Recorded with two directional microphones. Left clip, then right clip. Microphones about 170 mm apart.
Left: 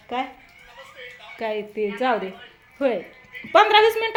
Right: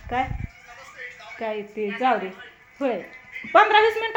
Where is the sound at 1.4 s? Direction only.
15° left (ahead or behind).